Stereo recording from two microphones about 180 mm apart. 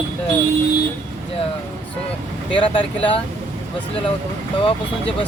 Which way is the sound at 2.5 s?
30° left (ahead or behind).